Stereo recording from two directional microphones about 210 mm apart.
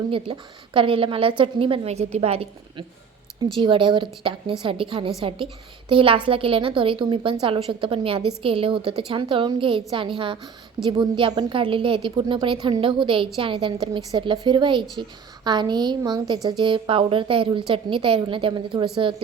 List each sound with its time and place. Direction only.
0.1 s a woman's voice: 25° right (ahead or behind)